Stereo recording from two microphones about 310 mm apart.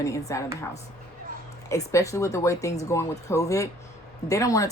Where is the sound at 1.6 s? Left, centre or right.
Centre.